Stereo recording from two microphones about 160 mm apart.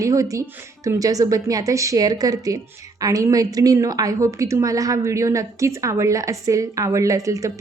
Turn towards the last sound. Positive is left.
turn(degrees=-20)  # may be behind; listen again after turning